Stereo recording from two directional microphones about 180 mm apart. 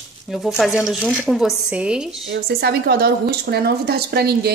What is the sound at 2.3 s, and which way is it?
Speech, 60° right (ahead or behind).